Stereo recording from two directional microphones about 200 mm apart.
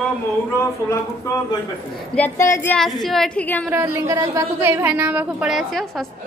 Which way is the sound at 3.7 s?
15° right (ahead or behind).